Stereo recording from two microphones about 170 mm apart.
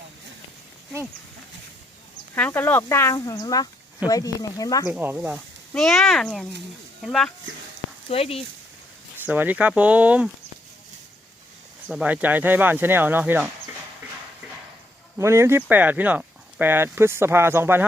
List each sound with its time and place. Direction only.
2.3 s speech: 10° left (ahead or behind)
4.9 s speech: 10° right (ahead or behind)
8.1 s speech: 35° left (ahead or behind)
9.2 s speech: 10° right (ahead or behind)
11.9 s speech: 5° right (ahead or behind)
15.2 s speech: 15° right (ahead or behind)